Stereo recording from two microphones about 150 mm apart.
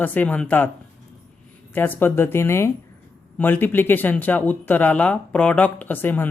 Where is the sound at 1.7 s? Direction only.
10° left (ahead or behind).